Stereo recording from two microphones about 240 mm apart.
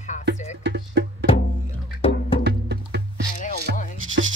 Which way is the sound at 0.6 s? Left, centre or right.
Right.